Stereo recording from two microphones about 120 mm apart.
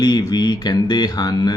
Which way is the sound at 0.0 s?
35° left (ahead or behind).